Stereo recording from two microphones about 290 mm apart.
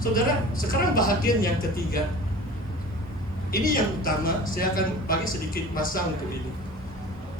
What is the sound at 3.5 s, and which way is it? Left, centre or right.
A man's voice, left.